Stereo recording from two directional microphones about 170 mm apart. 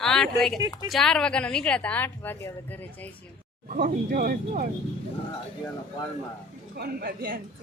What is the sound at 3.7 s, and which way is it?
Speech, 55° right (ahead or behind).